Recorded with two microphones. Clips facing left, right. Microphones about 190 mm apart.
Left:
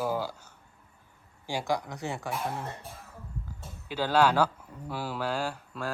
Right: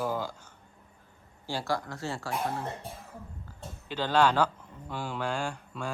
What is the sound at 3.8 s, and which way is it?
Speech, 10° left (ahead or behind).